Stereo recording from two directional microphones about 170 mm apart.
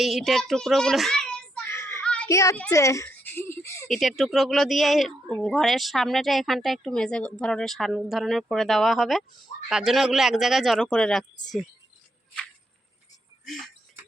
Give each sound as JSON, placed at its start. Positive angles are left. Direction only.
{"t": 0.0, "sound": "a child's voice", "side_deg": 0}
{"t": 1.7, "sound": "children playing", "side_deg": 15}
{"t": 2.3, "sound": "speech", "side_deg": 15}
{"t": 3.8, "sound": "speech", "side_deg": 0}
{"t": 13.4, "sound": "a sound", "side_deg": 0}